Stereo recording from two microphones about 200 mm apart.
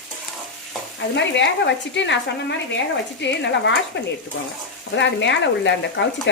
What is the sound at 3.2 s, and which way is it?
Speech, 60° left (ahead or behind).